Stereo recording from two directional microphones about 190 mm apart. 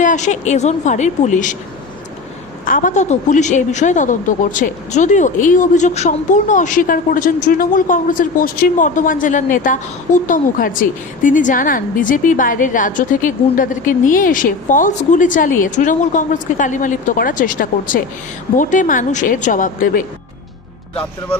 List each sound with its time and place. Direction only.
0.0 s a woman's voice: 40° left (ahead or behind)
2.6 s a woman's voice: 45° left (ahead or behind)